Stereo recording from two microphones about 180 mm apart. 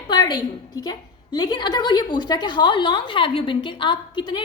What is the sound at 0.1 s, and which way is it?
A woman's voice, 25° left (ahead or behind).